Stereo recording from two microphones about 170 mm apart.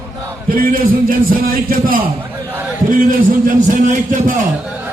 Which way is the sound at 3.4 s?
50° right (ahead or behind).